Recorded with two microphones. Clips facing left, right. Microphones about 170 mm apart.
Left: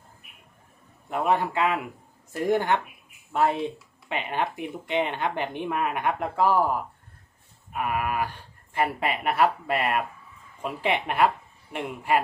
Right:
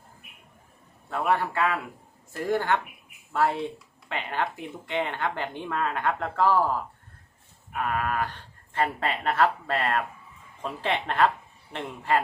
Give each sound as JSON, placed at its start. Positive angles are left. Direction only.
{"t": 1.1, "sound": "a woman's voice", "side_deg": 15}